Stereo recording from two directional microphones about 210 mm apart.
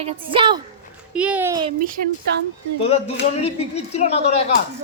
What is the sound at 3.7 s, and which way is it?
Speech, 30° left (ahead or behind).